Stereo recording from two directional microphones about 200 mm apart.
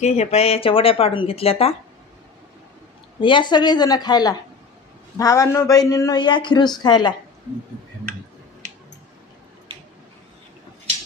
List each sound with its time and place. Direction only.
0.0 s speech: 30° left (ahead or behind)
3.2 s speech: 25° left (ahead or behind)